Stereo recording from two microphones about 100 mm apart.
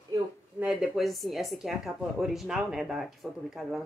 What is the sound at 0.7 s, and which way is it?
Speech, 5° right (ahead or behind).